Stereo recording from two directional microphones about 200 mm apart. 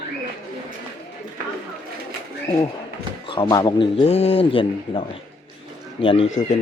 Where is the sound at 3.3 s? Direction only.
25° left (ahead or behind).